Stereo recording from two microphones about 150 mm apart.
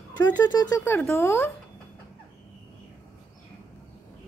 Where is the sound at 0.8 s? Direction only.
15° left (ahead or behind).